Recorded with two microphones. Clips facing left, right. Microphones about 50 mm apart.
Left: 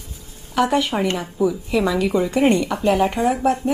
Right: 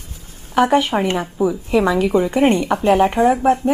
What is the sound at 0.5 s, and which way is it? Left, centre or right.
Speech, right.